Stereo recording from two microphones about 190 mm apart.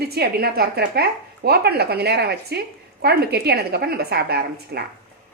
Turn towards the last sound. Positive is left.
turn(degrees=-55)  # may be behind; listen again after turning